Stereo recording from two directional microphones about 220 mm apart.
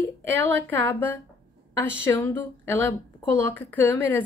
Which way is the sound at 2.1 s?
10° left (ahead or behind).